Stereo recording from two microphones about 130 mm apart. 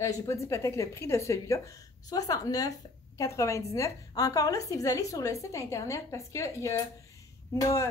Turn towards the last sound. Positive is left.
turn(degrees=25)  # may be behind; listen again after turning